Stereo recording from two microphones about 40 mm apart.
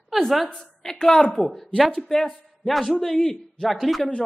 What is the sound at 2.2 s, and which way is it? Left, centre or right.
A man's voice, centre.